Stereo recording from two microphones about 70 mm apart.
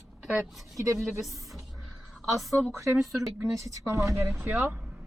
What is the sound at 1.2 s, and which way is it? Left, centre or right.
Speech, centre.